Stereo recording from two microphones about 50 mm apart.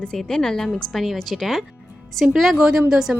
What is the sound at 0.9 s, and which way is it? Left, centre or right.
Speech, centre.